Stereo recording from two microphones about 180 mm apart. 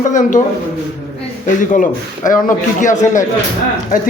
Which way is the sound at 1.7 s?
50° left (ahead or behind).